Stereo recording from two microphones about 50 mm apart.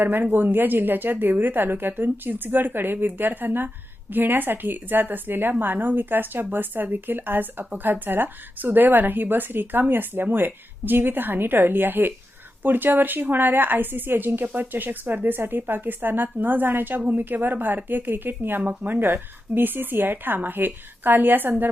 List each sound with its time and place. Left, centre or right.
0.0 s a woman's voice: right